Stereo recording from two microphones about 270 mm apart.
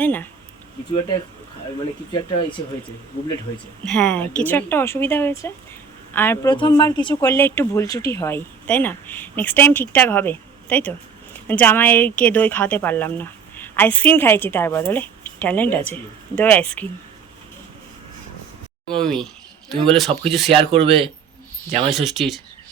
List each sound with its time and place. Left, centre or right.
0.0 s speech: centre
3.8 s speech: centre
18.9 s speech: centre
20.6 s speech: right
21.8 s speech: centre